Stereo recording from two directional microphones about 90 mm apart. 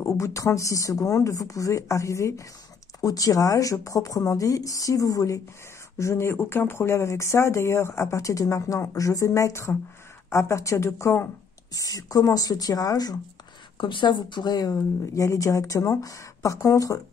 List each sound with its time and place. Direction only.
0.2 s speech: 35° left (ahead or behind)
13.7 s speech: 65° left (ahead or behind); by 17.0 s 40° left (ahead or behind)